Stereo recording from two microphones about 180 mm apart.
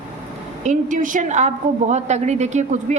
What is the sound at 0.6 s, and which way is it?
A woman's voice, 45° right (ahead or behind).